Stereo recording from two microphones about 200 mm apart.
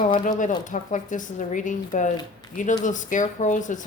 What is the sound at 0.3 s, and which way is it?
Speech, 40° left (ahead or behind).